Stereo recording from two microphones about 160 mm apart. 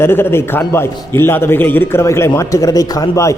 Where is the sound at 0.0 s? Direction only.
15° left (ahead or behind).